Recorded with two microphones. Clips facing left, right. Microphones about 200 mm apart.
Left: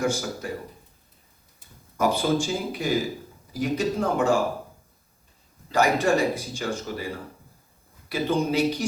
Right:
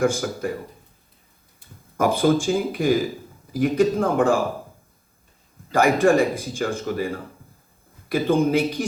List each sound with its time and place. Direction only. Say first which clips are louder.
0.0 s speech: right 5 dB; 50° right (ahead or behind)
2.0 s speech: right 4 dB; 50° right (ahead or behind)
5.7 s speech: right 4 dB; 50° right (ahead or behind)